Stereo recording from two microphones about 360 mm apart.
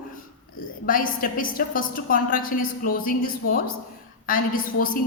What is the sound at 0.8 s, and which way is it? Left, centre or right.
A woman's voice, left.